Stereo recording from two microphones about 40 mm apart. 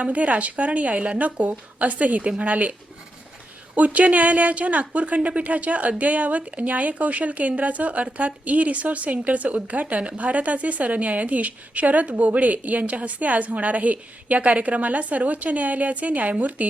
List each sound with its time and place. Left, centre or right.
0.0 s speech: right
3.8 s speech: right